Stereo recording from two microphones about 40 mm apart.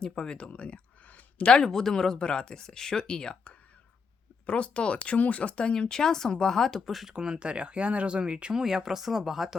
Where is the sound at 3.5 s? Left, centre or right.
Left.